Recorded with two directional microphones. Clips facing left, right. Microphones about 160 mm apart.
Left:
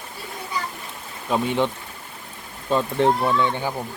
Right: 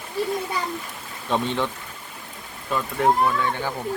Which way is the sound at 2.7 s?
25° left (ahead or behind).